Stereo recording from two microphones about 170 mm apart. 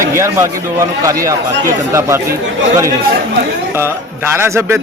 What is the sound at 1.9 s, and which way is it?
Speech, 15° right (ahead or behind).